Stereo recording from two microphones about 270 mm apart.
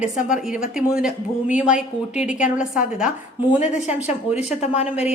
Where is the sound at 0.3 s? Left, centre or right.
Centre.